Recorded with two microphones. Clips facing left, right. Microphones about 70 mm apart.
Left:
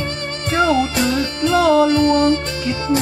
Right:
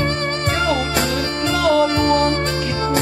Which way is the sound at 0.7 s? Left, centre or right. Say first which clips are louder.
Left 2 dB; right.